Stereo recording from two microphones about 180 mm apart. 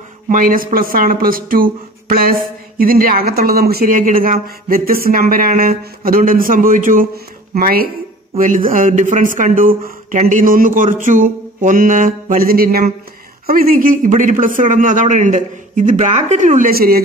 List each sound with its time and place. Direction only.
0.3 s speech: 50° right (ahead or behind)